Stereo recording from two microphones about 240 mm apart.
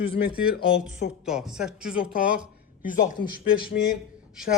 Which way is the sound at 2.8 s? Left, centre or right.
Left.